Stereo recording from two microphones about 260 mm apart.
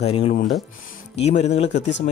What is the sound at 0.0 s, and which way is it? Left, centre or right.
Speech, left.